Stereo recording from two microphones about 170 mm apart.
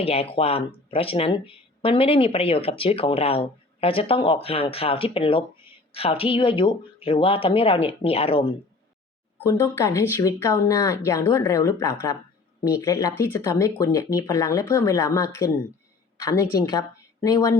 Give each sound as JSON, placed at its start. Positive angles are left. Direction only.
{"t": 0.0, "sound": "speech", "side_deg": 35}
{"t": 9.4, "sound": "speech", "side_deg": 15}